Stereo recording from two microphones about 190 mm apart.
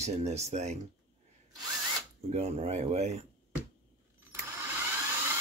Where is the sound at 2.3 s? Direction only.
35° right (ahead or behind).